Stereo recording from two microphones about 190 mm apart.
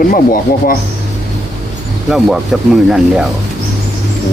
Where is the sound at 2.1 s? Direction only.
Centre (ahead or behind).